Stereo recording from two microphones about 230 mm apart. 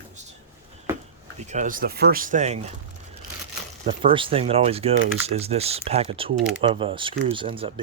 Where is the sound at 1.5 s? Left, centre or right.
Right.